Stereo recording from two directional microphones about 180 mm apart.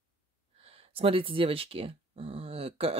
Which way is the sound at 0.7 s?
30° right (ahead or behind).